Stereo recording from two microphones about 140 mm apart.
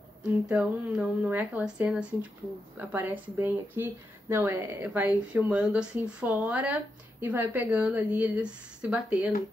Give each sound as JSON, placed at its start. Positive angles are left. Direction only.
{"t": 0.2, "sound": "speech", "side_deg": -5}